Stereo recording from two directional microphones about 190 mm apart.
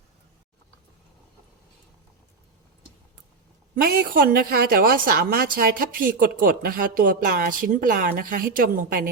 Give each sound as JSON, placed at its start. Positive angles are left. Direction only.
{"t": 3.8, "sound": "a woman's voice", "side_deg": -50}